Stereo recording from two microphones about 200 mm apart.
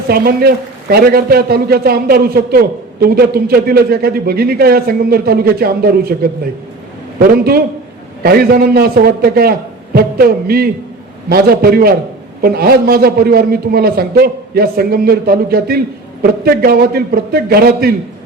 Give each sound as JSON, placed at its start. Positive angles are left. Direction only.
{"t": 0.1, "sound": "a man's voice", "side_deg": -50}
{"t": 7.2, "sound": "a man's voice", "side_deg": -50}